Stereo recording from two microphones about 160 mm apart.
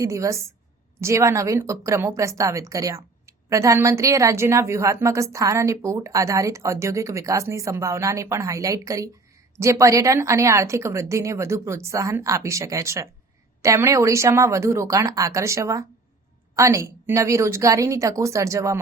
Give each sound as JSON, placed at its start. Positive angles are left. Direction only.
{"t": 0.0, "sound": "a woman's voice", "side_deg": -20}